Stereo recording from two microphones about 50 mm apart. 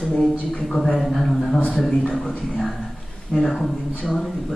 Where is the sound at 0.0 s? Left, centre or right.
Centre.